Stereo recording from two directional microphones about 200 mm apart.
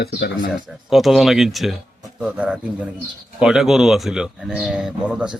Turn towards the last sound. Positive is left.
turn(degrees=-5)  # may be behind; listen again after turning